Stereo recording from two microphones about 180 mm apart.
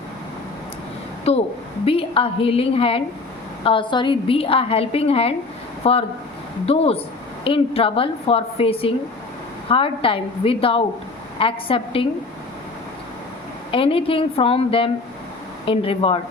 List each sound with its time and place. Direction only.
1.2 s a woman's voice: 35° left (ahead or behind)
13.7 s a woman's voice: 30° left (ahead or behind)